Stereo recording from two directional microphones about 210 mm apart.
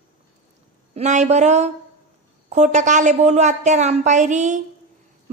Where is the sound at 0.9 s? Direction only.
35° right (ahead or behind).